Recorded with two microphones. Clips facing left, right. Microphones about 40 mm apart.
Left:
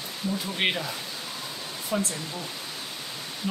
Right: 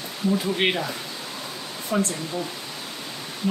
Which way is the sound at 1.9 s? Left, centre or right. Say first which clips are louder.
Right 4 dB; centre.